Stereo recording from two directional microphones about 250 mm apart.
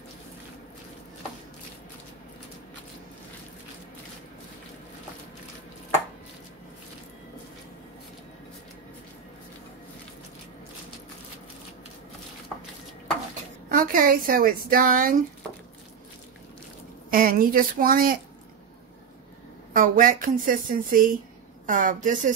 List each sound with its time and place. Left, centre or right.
13.7 s speech: right
17.1 s speech: right
19.7 s speech: right